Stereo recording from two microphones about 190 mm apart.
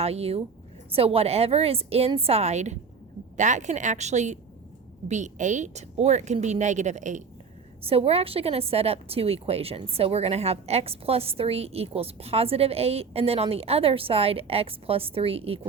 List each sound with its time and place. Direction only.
0.0 s a woman's voice: 30° right (ahead or behind)